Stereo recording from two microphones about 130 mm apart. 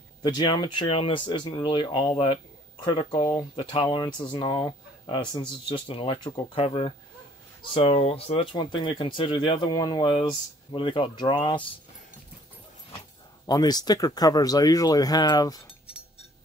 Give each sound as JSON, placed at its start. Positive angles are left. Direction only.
{"t": 0.2, "sound": "speech", "side_deg": 30}
{"t": 6.5, "sound": "speech", "side_deg": 45}
{"t": 13.5, "sound": "speech", "side_deg": 30}